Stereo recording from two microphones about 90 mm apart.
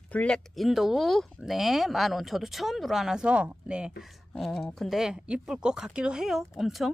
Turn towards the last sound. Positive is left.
turn(degrees=-5)  # may be behind; listen again after turning